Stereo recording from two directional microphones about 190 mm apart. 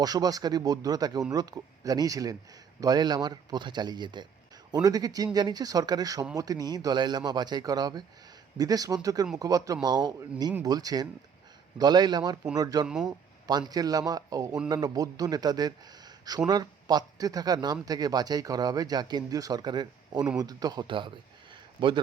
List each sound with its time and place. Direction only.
0.0 s speech: 20° right (ahead or behind)
12.9 s speech: 5° right (ahead or behind)
13.5 s speech: 20° right (ahead or behind)